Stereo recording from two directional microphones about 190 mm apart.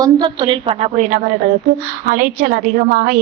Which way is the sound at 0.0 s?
25° right (ahead or behind).